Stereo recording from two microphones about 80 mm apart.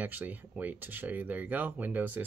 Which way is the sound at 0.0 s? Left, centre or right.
Right.